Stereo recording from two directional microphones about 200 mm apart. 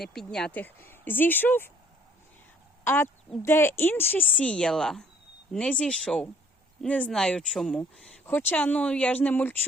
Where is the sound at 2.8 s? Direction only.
10° left (ahead or behind).